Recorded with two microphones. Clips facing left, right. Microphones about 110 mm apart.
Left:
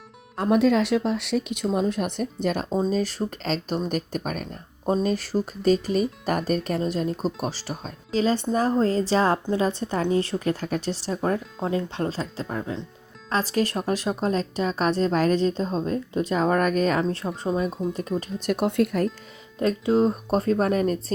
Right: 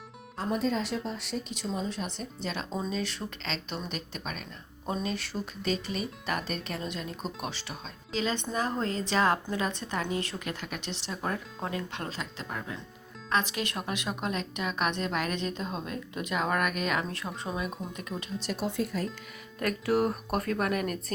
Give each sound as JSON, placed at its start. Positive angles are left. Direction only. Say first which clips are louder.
{"t": 0.3, "sound": "a woman's voice", "louder": "left 10 dB", "side_deg": 70}
{"t": 4.9, "sound": "a woman's voice", "louder": "left 9 dB", "side_deg": 40}
{"t": 17.7, "sound": "speech", "louder": "left 10 dB", "side_deg": 0}
{"t": 18.2, "sound": "speech", "louder": "left 6 dB", "side_deg": 50}
{"t": 19.5, "sound": "speech", "louder": "left 6 dB", "side_deg": 25}